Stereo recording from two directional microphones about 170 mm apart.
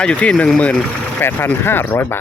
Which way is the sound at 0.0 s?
5° left (ahead or behind).